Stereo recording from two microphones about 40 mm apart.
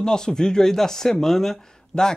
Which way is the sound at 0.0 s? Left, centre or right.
Centre.